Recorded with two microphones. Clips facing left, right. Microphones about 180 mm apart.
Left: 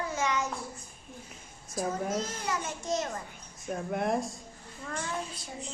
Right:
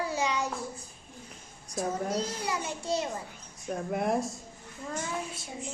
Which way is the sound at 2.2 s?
15° right (ahead or behind).